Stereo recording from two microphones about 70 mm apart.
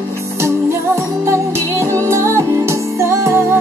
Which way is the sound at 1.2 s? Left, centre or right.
Right.